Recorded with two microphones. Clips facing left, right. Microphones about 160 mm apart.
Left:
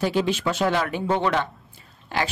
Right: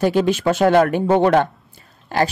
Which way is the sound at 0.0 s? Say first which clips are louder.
Right 6 dB; 50° right (ahead or behind).